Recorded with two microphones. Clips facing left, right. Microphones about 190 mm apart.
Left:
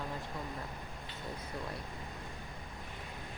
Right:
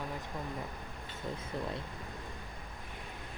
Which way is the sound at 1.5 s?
25° right (ahead or behind).